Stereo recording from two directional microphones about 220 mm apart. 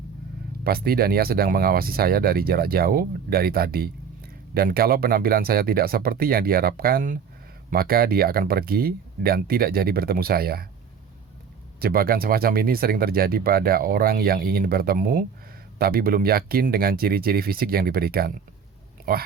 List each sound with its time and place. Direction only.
0.6 s speech: 45° right (ahead or behind)
11.8 s speech: 40° right (ahead or behind)